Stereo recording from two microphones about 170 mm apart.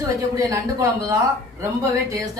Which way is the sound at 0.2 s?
20° right (ahead or behind).